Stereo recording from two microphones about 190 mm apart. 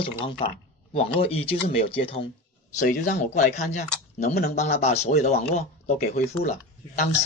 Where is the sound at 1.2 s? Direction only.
30° left (ahead or behind).